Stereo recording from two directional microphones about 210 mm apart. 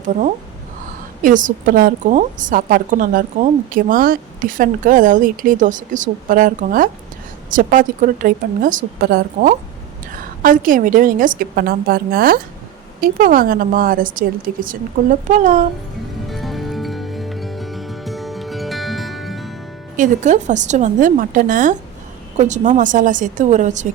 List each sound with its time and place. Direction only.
1.2 s a woman's voice: 40° right (ahead or behind)
16.3 s music: centre (ahead or behind)
20.0 s a woman's voice: 35° right (ahead or behind)